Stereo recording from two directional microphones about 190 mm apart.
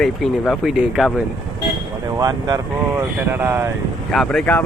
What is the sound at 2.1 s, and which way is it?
Speech, 20° right (ahead or behind).